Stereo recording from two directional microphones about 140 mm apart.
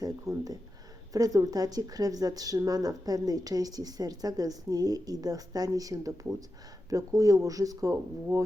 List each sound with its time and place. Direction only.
0.0 s a woman's voice: 25° right (ahead or behind)